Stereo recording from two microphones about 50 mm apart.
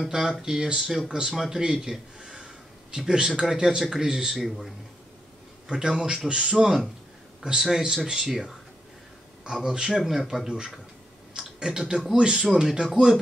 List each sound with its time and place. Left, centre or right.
0.0 s speech: centre
4.4 s speech: centre
5.7 s speech: centre
11.3 s a sound: centre
12.1 s speech: centre